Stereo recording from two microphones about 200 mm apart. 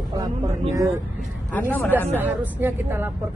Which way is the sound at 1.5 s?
10° left (ahead or behind).